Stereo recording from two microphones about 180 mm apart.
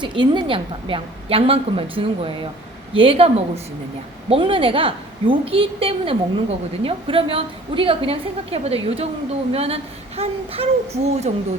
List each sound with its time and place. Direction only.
0.0 s a woman's voice: 25° right (ahead or behind)